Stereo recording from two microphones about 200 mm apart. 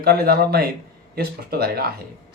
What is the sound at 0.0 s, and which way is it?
Speech, 50° right (ahead or behind).